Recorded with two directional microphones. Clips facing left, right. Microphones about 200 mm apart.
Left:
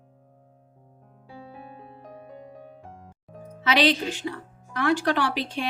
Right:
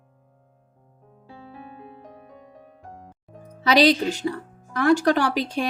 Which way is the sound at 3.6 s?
40° right (ahead or behind).